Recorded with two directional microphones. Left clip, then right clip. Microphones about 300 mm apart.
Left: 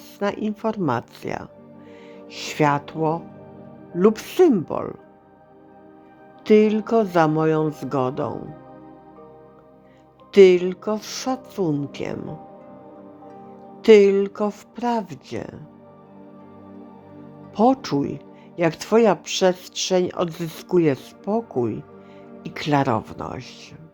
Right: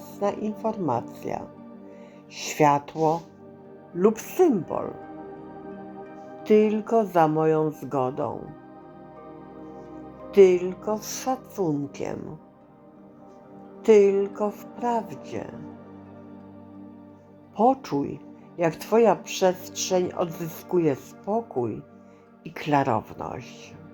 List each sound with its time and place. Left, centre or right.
0.2 s speech: centre
3.9 s speech: left
6.4 s speech: centre
10.3 s speech: left
13.8 s speech: left
17.6 s speech: left